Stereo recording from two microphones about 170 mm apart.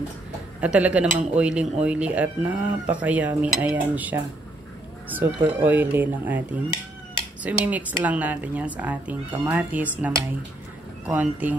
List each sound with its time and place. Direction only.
0.6 s speech: 10° right (ahead or behind)